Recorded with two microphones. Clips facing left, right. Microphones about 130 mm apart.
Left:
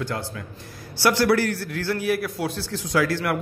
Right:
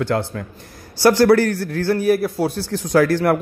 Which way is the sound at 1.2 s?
50° right (ahead or behind).